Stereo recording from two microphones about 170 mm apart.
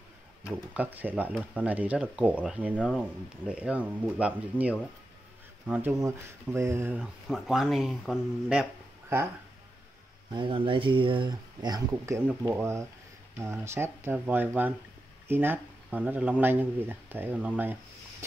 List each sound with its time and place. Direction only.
0.7 s speech: 10° right (ahead or behind)
10.3 s speech: 30° right (ahead or behind)
12.2 s speech: 10° right (ahead or behind)